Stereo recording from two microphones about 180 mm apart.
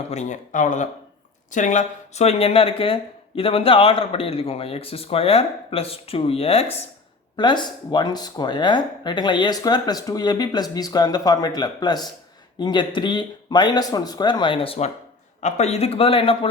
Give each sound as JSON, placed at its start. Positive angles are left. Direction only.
{"t": 0.1, "sound": "a man's voice", "side_deg": 40}